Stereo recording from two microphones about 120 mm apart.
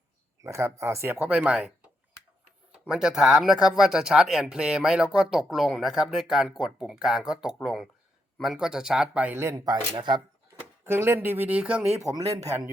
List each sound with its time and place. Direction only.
0.4 s speech: 25° right (ahead or behind)
10.8 s speech: 20° right (ahead or behind)
12.1 s speech: 30° right (ahead or behind)